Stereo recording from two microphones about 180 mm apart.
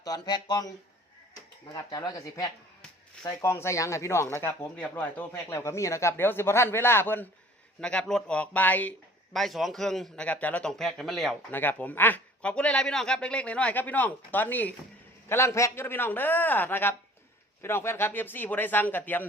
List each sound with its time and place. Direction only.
0.0 s speech: 20° left (ahead or behind)